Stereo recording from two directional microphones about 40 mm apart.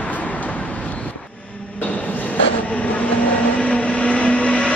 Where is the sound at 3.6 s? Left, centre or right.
Left.